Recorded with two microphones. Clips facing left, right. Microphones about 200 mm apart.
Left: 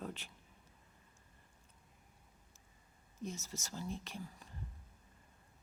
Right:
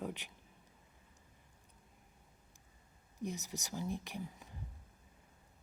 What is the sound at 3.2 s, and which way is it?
Speech, 15° right (ahead or behind).